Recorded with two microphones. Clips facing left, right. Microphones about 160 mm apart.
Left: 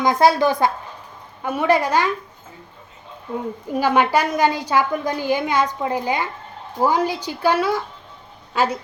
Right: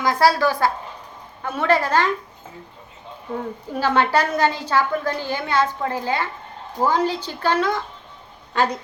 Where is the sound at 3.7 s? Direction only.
15° left (ahead or behind).